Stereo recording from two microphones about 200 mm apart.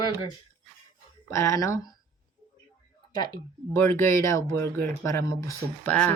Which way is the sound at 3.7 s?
10° left (ahead or behind).